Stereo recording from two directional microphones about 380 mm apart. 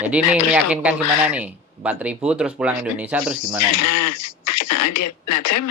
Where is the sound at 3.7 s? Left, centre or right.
Left.